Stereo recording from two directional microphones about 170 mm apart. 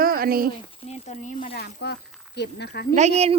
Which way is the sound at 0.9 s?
45° left (ahead or behind).